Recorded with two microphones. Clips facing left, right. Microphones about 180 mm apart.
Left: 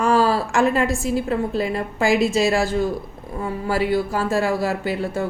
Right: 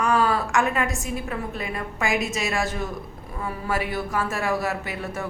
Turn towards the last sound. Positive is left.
turn(degrees=30)  # may be behind; listen again after turning